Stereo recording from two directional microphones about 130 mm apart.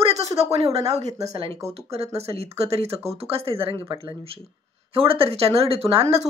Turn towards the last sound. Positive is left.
turn(degrees=-50)  # may be behind; listen again after turning